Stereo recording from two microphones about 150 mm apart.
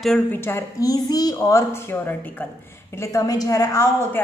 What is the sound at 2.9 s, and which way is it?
A woman's voice, 25° left (ahead or behind).